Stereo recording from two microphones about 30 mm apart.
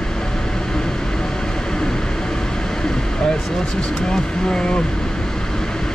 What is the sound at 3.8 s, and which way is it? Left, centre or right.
Speech, left.